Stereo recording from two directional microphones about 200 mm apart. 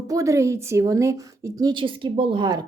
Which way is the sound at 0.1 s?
15° right (ahead or behind).